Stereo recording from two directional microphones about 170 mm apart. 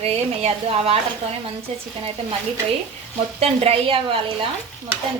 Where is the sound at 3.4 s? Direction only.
35° right (ahead or behind).